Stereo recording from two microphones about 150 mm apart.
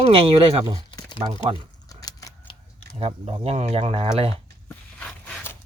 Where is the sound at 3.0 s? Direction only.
40° right (ahead or behind).